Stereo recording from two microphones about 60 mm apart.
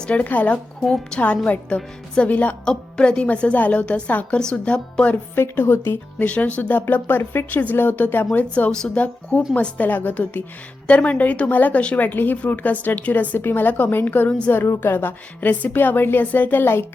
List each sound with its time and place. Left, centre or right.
0.0 s a woman's voice: left
0.8 s speech: centre
1.5 s a woman's voice: left
4.4 s speech: centre
5.1 s speech: left
6.1 s a woman's voice: left
11.9 s speech: left